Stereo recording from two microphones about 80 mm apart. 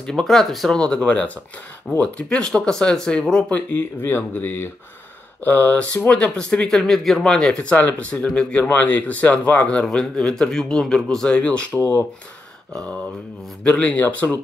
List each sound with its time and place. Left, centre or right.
0.0 s speech: centre
3.5 s speech: left
9.8 s speech: centre
13.7 s speech: centre